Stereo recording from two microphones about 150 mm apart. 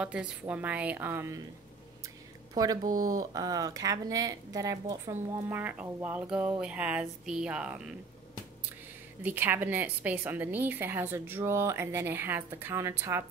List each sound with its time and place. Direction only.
0.0 s a woman's voice: 10° right (ahead or behind)
2.5 s a woman's voice: 25° right (ahead or behind); by 7.9 s 5° right (ahead or behind)
9.2 s a woman's voice: 15° right (ahead or behind)